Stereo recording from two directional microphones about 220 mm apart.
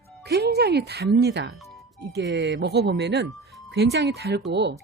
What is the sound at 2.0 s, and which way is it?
Speech, 50° right (ahead or behind).